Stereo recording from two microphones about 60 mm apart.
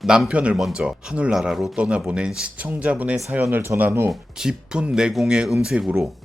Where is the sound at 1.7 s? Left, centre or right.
Centre.